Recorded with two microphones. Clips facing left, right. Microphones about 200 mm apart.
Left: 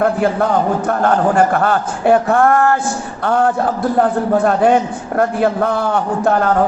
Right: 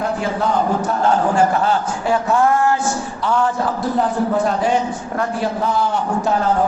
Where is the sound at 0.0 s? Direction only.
55° left (ahead or behind).